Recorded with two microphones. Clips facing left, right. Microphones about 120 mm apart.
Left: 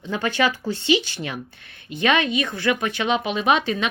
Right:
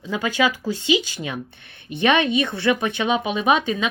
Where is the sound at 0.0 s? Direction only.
10° right (ahead or behind).